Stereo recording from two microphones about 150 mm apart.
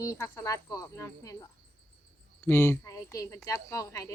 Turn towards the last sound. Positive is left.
turn(degrees=20)  # may be behind; listen again after turning